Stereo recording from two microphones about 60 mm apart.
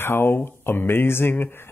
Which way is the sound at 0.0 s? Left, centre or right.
Left.